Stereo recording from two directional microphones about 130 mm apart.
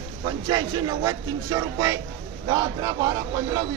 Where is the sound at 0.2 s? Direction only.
35° right (ahead or behind).